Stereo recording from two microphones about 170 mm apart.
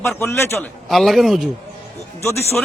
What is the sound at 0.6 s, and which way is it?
Speech, centre (ahead or behind).